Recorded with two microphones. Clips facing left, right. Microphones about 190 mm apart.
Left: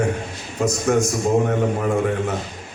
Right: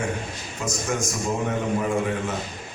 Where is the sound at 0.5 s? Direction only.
60° left (ahead or behind).